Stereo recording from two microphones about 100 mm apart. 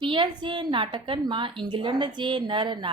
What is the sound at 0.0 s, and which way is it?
A woman's voice, 55° right (ahead or behind).